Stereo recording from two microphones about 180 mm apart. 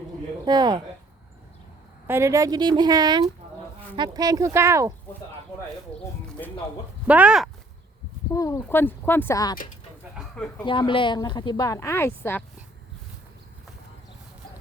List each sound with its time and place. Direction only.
0.4 s a woman's voice: 20° right (ahead or behind)
2.0 s a woman's voice: 15° right (ahead or behind)
7.1 s speech: 5° right (ahead or behind)
8.3 s speech: 20° left (ahead or behind)
10.2 s a sound: 5° left (ahead or behind)
10.7 s speech: 25° left (ahead or behind)